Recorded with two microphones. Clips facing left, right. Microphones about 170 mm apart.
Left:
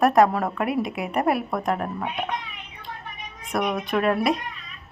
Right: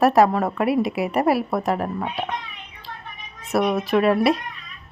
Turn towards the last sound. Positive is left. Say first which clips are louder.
# right 4 dB
turn(degrees=-5)  # may be behind; listen again after turning